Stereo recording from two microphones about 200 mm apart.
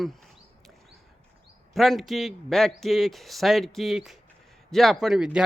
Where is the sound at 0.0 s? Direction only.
Centre (ahead or behind).